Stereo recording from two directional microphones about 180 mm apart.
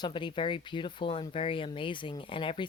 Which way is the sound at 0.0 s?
25° left (ahead or behind).